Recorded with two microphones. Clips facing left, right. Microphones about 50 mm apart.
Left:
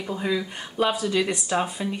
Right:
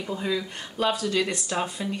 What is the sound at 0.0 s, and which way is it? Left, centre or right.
Speech, centre.